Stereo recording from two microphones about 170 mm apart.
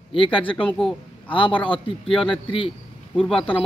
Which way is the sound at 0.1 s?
30° left (ahead or behind).